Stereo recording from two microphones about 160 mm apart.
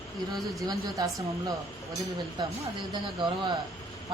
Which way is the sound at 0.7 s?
25° right (ahead or behind).